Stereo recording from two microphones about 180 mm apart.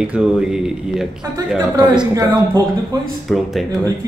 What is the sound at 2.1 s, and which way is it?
Speech, 20° right (ahead or behind).